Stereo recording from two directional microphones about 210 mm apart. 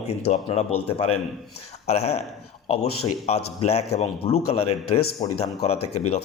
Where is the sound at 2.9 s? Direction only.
90° left.